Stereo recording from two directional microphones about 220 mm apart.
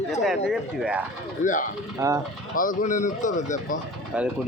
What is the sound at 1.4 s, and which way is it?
Speech, 35° left (ahead or behind).